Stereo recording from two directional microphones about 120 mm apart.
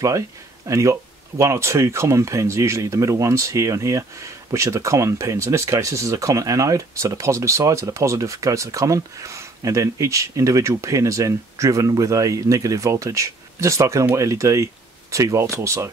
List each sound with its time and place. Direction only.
0.7 s speech: 25° right (ahead or behind)